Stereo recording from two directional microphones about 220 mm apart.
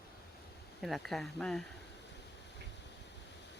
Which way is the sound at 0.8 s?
Centre (ahead or behind).